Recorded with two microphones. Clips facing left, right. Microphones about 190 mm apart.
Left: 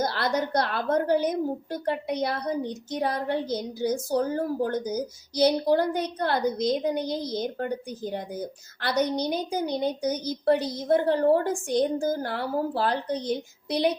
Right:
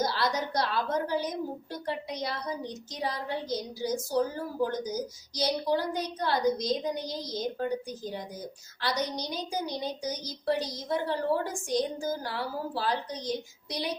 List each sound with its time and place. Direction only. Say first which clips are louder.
0.0 s a woman's voice: left 3 dB; 55° left (ahead or behind)